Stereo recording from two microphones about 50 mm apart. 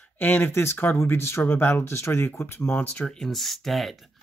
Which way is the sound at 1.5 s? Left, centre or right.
Left.